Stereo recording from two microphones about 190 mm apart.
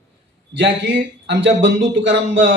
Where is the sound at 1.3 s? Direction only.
70° right (ahead or behind).